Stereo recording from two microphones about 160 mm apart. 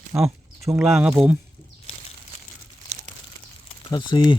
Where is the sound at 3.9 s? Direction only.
30° left (ahead or behind).